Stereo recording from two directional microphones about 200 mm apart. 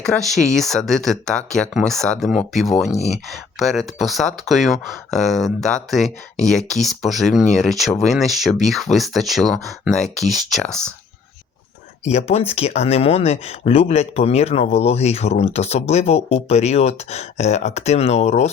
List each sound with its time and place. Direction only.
0.5 s speech: centre (ahead or behind)
12.0 s speech: 30° left (ahead or behind)